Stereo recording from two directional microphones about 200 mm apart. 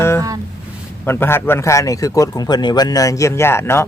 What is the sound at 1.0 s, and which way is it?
A man's voice, 10° left (ahead or behind).